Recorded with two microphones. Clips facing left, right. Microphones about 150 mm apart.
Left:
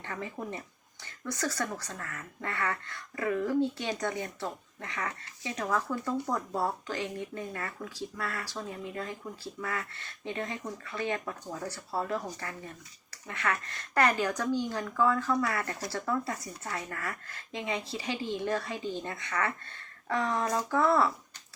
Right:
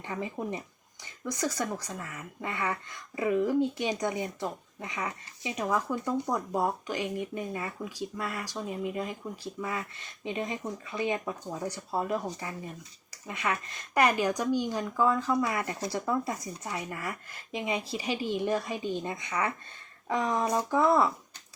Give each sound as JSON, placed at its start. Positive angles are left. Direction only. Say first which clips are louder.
{"t": 0.0, "sound": "speech", "louder": "right 3 dB", "side_deg": -15}